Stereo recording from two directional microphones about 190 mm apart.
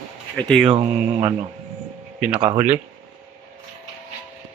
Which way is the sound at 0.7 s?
30° right (ahead or behind).